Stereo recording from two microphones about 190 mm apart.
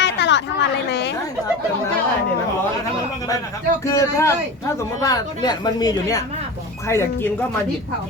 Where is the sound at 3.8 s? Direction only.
15° left (ahead or behind).